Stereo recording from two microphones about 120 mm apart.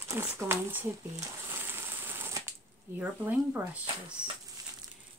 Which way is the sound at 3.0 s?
10° right (ahead or behind).